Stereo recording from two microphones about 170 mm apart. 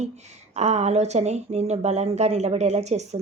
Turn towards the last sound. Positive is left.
turn(degrees=-40)  # may be behind; listen again after turning